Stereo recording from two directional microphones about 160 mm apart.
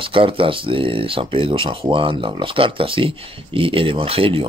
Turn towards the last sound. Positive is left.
turn(degrees=-35)  # may be behind; listen again after turning